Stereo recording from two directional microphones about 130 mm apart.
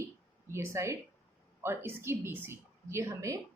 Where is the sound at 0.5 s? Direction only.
20° right (ahead or behind).